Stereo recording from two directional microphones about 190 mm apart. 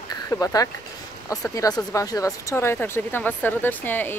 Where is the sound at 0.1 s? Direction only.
20° left (ahead or behind).